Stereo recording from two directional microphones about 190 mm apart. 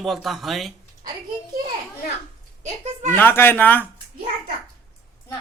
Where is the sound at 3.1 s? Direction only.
10° left (ahead or behind).